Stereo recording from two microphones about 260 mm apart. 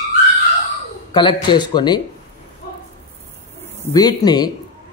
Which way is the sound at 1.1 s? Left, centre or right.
Centre.